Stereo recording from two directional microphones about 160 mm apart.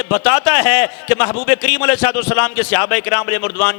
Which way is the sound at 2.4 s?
20° left (ahead or behind).